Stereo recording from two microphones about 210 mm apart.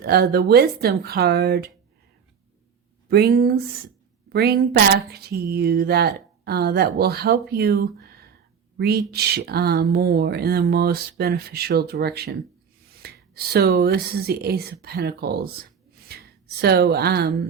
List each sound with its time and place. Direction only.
0.0 s speech: 50° right (ahead or behind)
3.1 s speech: 50° right (ahead or behind)